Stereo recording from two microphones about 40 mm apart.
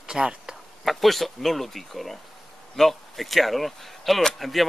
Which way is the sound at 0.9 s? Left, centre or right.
Centre.